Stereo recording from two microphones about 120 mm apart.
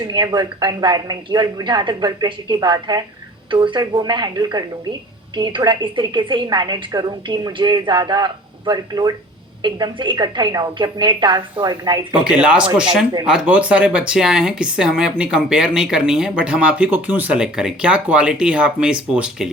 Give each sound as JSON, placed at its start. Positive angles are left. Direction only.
{"t": 0.0, "sound": "a woman's voice", "side_deg": -40}
{"t": 12.1, "sound": "speech", "side_deg": -10}